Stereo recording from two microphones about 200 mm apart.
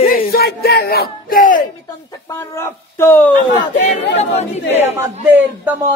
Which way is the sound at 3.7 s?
40° left (ahead or behind).